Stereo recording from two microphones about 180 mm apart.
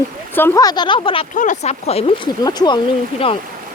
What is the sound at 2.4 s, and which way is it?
Speech, 20° left (ahead or behind).